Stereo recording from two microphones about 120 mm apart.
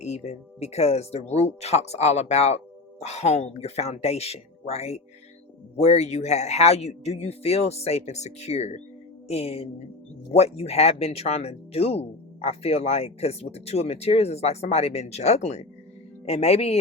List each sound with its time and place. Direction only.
0.0 s speech: 65° left (ahead or behind)